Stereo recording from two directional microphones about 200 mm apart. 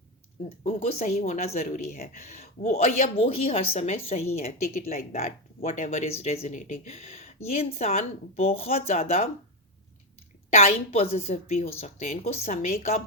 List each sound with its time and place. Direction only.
0.4 s speech: 30° left (ahead or behind)
10.5 s speech: 35° left (ahead or behind)